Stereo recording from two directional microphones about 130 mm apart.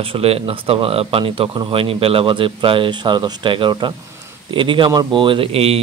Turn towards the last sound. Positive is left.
turn(degrees=-50)  # may be behind; listen again after turning